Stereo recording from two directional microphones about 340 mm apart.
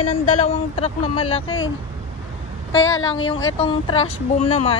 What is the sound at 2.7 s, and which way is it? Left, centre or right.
Speech, left.